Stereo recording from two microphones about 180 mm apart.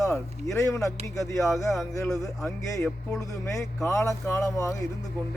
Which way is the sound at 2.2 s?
15° left (ahead or behind).